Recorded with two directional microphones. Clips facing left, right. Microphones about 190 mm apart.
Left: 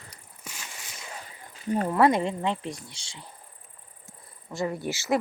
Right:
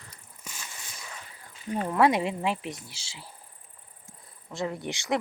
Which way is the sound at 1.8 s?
Centre (ahead or behind).